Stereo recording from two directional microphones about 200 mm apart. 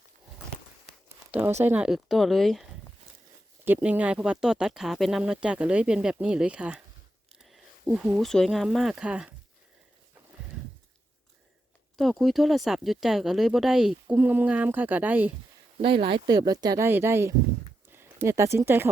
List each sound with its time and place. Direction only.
1.3 s speech: 10° right (ahead or behind)
3.6 s speech: 10° right (ahead or behind)
7.3 s a sound: centre (ahead or behind)
8.3 s speech: centre (ahead or behind)
11.9 s speech: centre (ahead or behind)
15.8 s speech: 25° right (ahead or behind)